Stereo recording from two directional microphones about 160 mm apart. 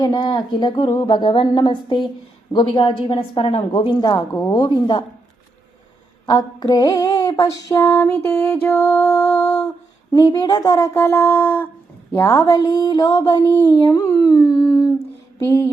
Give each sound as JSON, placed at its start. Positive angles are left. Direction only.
{"t": 0.0, "sound": "a woman's voice", "side_deg": 25}
{"t": 6.2, "sound": "a woman's voice", "side_deg": 25}